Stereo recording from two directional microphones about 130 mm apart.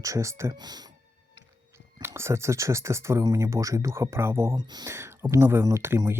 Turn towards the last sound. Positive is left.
turn(degrees=-20)  # may be behind; listen again after turning